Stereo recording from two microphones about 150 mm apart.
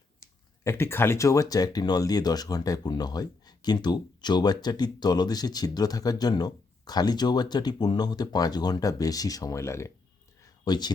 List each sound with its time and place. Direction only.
0.2 s speech: 20° left (ahead or behind)